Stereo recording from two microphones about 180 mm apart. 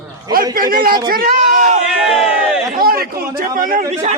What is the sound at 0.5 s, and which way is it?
A man's voice, 55° right (ahead or behind).